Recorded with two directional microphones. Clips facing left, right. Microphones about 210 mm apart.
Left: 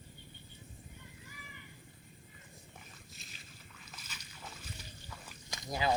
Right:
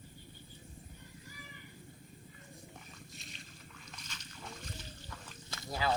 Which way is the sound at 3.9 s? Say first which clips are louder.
Right 1 dB; 5° left (ahead or behind).